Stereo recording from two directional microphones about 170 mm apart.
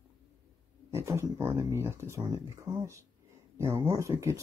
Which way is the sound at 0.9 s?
15° right (ahead or behind).